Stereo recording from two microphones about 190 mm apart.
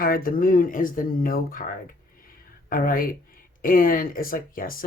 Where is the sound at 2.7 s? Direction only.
50° left (ahead or behind).